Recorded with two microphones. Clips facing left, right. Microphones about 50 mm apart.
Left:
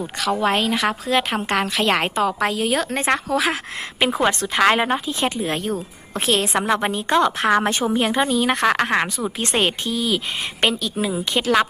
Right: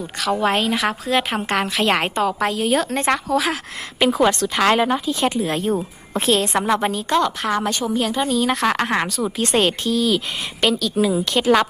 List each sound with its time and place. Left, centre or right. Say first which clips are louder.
0.2 s a woman's voice: right 1 dB; centre
4.1 s a woman's voice: right 3 dB; centre
5.4 s a woman's voice: right 3 dB; centre
6.8 s a woman's voice: left 1 dB; centre
7.4 s a woman's voice: left 3 dB; left
7.8 s a woman's voice: left 2 dB; left
8.3 s a woman's voice: left 1 dB; centre
10.6 s a woman's voice: right 3 dB; left
11.3 s a woman's voice: right 2 dB; centre